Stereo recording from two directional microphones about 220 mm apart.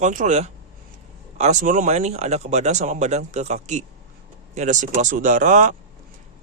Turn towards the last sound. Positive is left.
turn(degrees=-35)  # may be behind; listen again after turning